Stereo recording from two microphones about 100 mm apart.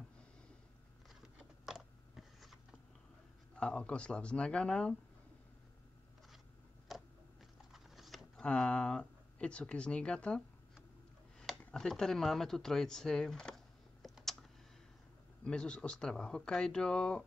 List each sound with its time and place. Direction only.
1.0 s a sound: 5° right (ahead or behind)
3.5 s speech: 10° left (ahead or behind)
6.9 s a sound: centre (ahead or behind)
8.5 s speech: 10° left (ahead or behind)
11.7 s speech: 5° left (ahead or behind)
14.0 s computer keyboard: centre (ahead or behind)
15.4 s speech: 10° left (ahead or behind)